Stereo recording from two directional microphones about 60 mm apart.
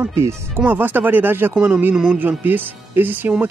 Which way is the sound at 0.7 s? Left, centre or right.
Right.